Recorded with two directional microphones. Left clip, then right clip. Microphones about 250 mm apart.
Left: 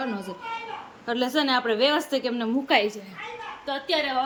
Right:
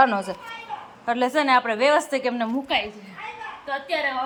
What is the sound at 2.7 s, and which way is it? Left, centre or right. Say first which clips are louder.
Speech: left 3 dB; centre.